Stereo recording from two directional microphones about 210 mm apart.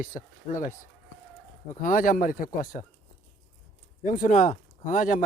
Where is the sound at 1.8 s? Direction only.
40° left (ahead or behind).